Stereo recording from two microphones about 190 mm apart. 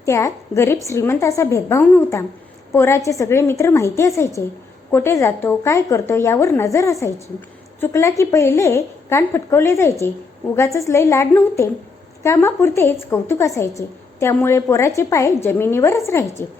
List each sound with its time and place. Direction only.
0.0 s a woman's voice: 15° left (ahead or behind)